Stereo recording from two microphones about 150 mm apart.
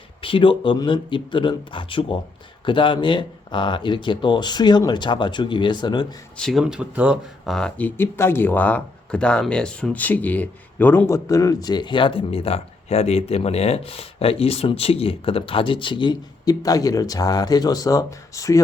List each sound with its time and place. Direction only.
0.2 s speech: 35° left (ahead or behind)
6.3 s speech: centre (ahead or behind); by 18.6 s 20° left (ahead or behind)